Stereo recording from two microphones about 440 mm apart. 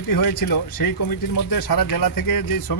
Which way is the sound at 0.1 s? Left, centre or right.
Left.